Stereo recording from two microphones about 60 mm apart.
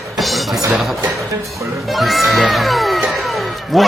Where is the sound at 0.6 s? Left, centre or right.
Centre.